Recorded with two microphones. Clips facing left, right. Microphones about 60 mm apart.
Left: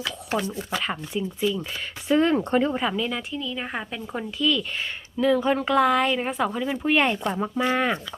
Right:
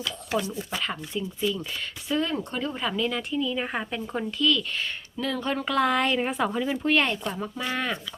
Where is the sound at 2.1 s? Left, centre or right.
Left.